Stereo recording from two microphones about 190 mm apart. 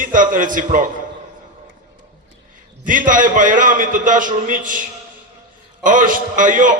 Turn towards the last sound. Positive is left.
turn(degrees=-45)  # may be behind; listen again after turning